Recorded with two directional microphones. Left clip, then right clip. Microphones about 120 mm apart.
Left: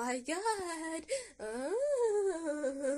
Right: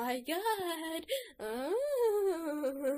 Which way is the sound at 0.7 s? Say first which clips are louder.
Right 1 dB; 35° right (ahead or behind).